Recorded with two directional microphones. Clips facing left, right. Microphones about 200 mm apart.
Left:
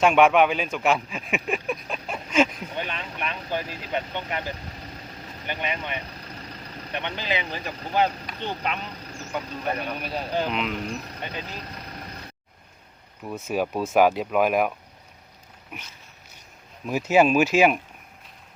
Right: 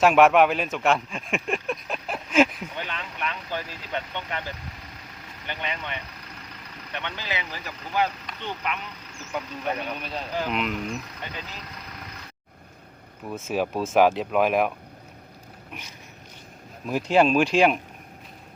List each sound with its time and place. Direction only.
0.0 s speech: 5° right (ahead or behind)
2.7 s speech: 20° left (ahead or behind)
6.0 s vehicle: 35° left (ahead or behind)
6.9 s speech: 20° left (ahead or behind); by 9.3 s 35° left (ahead or behind)
9.6 s speech: 10° left (ahead or behind)
10.2 s speech: 30° left (ahead or behind)
10.5 s speech: centre (ahead or behind)
11.6 s vehicle: 30° left (ahead or behind)
13.2 s speech: centre (ahead or behind)
15.7 s speech: 5° left (ahead or behind)